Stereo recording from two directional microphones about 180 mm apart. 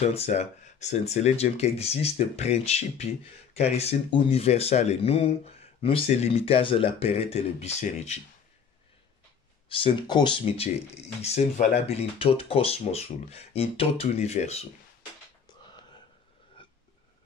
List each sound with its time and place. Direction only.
0.1 s speech: 35° left (ahead or behind)
9.7 s speech: 30° left (ahead or behind)
15.6 s a sound: 25° left (ahead or behind)
16.6 s burping: 30° left (ahead or behind)